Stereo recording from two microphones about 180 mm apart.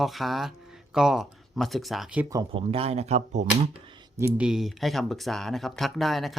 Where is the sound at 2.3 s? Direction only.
20° right (ahead or behind).